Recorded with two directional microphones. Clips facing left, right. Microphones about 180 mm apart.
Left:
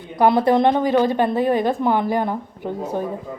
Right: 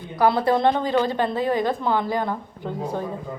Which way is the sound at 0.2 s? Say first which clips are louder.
Left 4 dB; 20° left (ahead or behind).